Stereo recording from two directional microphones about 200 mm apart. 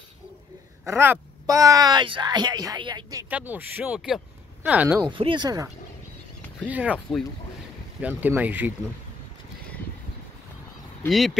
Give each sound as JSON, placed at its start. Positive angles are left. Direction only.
{"t": 0.8, "sound": "speech", "side_deg": -10}
{"t": 5.0, "sound": "speech", "side_deg": -25}
{"t": 6.7, "sound": "speech", "side_deg": -5}
{"t": 11.1, "sound": "speech", "side_deg": 0}